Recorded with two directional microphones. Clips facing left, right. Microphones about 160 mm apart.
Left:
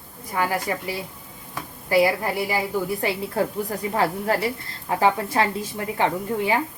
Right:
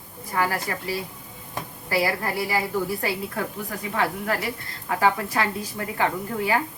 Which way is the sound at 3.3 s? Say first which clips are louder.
Left 6 dB; 35° left (ahead or behind).